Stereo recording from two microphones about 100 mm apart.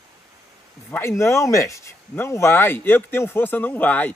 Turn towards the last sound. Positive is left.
turn(degrees=15)  # may be behind; listen again after turning